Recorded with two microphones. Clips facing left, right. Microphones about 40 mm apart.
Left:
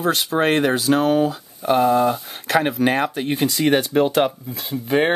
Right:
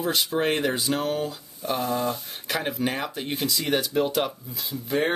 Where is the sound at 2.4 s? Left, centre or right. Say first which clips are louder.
Left 9 dB; left.